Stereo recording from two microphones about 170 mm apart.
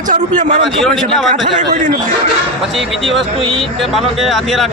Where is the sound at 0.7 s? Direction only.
5° left (ahead or behind).